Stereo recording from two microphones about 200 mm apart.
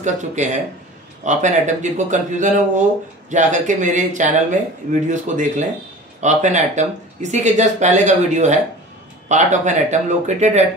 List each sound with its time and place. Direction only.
0.0 s speech: 35° right (ahead or behind)